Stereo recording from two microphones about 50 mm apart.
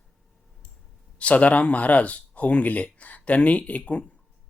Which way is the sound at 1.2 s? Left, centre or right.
Left.